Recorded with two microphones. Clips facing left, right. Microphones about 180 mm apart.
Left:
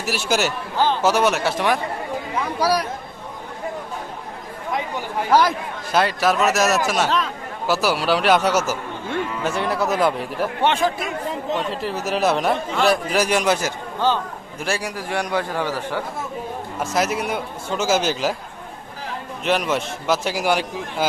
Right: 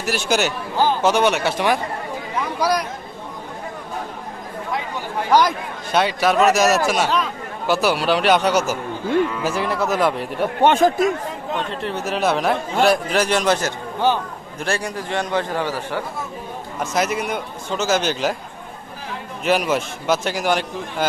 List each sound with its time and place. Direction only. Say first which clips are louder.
0.0 s a man's voice: right 1 dB; 5° left (ahead or behind)
5.3 s a man's voice: right 1 dB; 5° left (ahead or behind)
10.6 s speech: right 6 dB; 45° right (ahead or behind)
11.7 s a man's voice: even; centre (ahead or behind)
15.5 s a man's voice: even; 15° right (ahead or behind)
16.9 s a man's voice: even; centre (ahead or behind)
19.5 s a man's voice: right 2 dB; 5° right (ahead or behind)